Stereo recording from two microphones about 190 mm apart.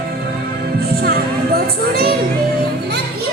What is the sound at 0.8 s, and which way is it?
Music, 55° right (ahead or behind).